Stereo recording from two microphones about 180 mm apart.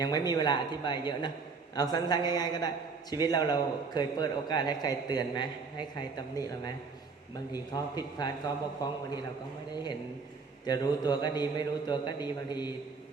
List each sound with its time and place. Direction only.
0.0 s a man's voice: 20° left (ahead or behind)
7.5 s a man's voice: 20° left (ahead or behind)
10.7 s a man's voice: 25° left (ahead or behind)